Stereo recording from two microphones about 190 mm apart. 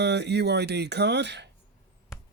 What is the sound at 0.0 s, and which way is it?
Speech, 65° right (ahead or behind).